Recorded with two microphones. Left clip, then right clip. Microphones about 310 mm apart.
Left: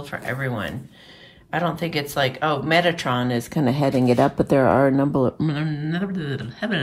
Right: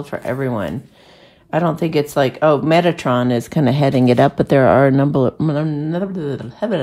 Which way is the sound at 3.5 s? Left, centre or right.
Left.